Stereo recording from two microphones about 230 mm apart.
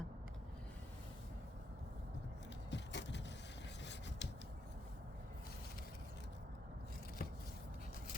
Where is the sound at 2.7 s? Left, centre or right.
Left.